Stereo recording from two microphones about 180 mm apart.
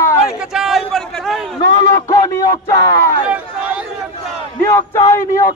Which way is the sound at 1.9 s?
15° left (ahead or behind).